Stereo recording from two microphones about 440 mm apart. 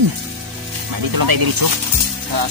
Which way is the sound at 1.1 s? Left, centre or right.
Right.